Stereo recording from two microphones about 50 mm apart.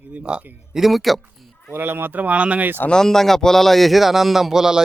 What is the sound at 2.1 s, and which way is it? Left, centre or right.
Speech, right.